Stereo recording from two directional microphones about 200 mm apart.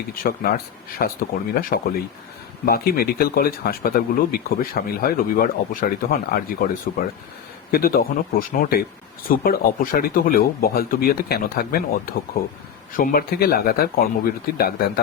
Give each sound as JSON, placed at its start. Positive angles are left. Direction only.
{"t": 0.1, "sound": "speech", "side_deg": 45}
{"t": 7.7, "sound": "speech", "side_deg": 50}